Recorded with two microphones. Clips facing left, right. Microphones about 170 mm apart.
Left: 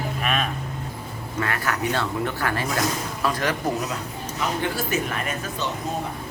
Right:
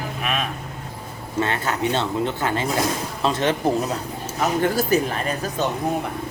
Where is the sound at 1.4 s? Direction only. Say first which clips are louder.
Right 3 dB; 25° right (ahead or behind).